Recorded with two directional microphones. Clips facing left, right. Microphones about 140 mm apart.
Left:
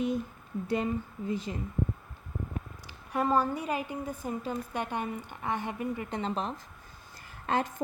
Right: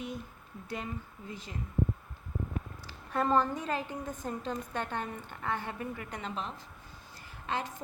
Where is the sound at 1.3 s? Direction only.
20° left (ahead or behind).